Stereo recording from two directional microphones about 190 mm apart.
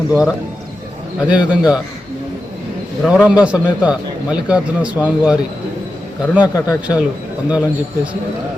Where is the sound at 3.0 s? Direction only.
5° right (ahead or behind).